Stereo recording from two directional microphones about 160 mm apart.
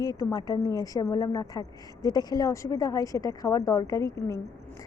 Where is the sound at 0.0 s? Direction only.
20° left (ahead or behind).